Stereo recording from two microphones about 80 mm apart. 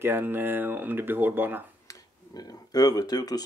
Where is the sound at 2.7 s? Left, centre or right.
Left.